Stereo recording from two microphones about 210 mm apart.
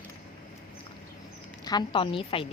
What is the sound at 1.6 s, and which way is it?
Speech, 20° left (ahead or behind).